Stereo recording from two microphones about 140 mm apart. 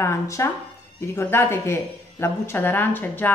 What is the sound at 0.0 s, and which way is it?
Speech, 20° left (ahead or behind).